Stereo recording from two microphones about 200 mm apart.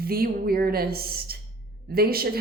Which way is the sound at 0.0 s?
50° right (ahead or behind).